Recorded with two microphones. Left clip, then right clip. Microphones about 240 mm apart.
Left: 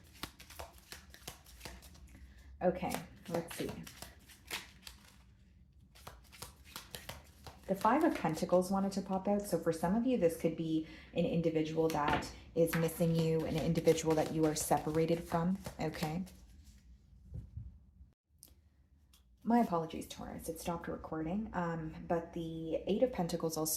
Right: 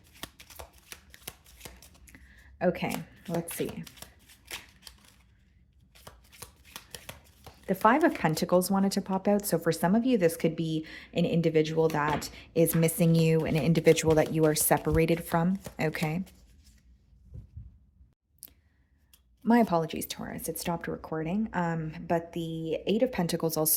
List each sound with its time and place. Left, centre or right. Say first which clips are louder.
0.2 s shuffling cards: right 3 dB; right
2.6 s speech: right 5 dB; right
6.9 s shuffling cards: right 3 dB; right
7.8 s a woman's voice: right 8 dB; right
19.4 s speech: right 7 dB; right